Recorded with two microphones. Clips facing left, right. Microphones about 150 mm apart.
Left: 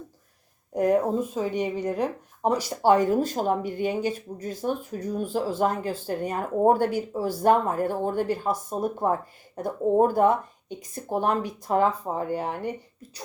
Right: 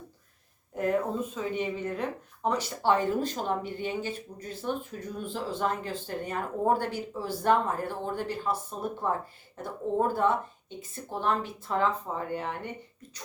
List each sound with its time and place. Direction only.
0.7 s speech: 40° left (ahead or behind)